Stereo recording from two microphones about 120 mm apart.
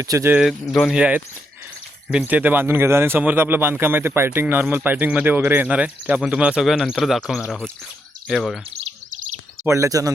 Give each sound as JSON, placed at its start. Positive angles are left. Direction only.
{"t": 0.0, "sound": "speech", "side_deg": -25}
{"t": 0.3, "sound": "speech", "side_deg": 0}
{"t": 0.9, "sound": "speech", "side_deg": -10}
{"t": 9.6, "sound": "speech", "side_deg": -25}